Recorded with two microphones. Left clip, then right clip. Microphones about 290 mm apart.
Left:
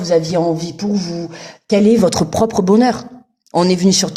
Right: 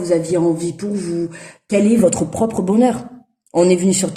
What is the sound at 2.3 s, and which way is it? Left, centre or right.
A woman's voice, left.